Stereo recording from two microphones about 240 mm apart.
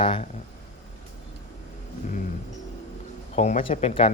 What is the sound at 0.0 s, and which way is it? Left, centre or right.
Speech, left.